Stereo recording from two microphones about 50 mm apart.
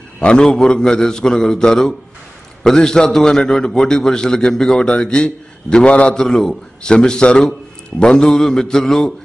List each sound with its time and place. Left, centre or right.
0.2 s a man's voice: centre
6.1 s a man's voice: centre